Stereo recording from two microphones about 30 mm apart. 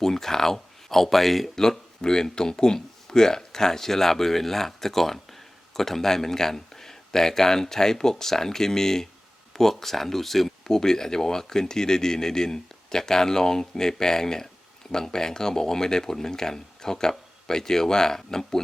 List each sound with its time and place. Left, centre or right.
0.0 s speech: centre
2.0 s speech: left; by 10.5 s centre
10.6 s speech: left